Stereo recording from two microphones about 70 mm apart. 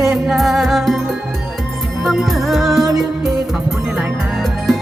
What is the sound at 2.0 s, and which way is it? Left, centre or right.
Music, centre.